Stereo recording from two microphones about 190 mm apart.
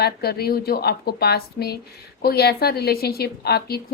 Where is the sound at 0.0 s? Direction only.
55° left (ahead or behind).